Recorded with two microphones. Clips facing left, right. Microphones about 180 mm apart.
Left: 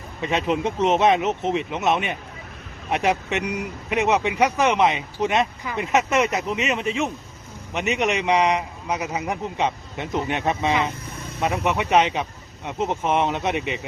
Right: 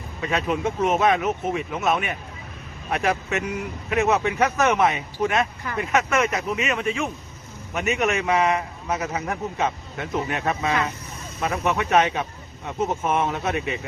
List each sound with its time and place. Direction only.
0.2 s a man's voice: 25° left (ahead or behind)